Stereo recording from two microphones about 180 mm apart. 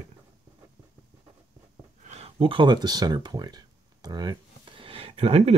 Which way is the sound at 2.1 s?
35° right (ahead or behind).